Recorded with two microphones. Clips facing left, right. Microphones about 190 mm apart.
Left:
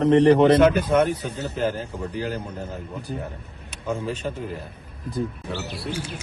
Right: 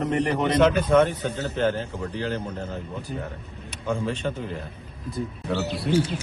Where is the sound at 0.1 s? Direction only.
35° left (ahead or behind).